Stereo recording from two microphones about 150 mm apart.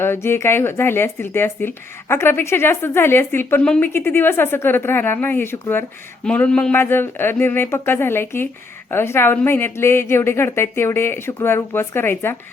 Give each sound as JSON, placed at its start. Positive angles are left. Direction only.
{"t": 0.0, "sound": "speech", "side_deg": 15}